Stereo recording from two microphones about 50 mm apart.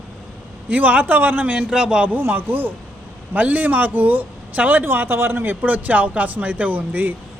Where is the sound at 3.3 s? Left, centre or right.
Right.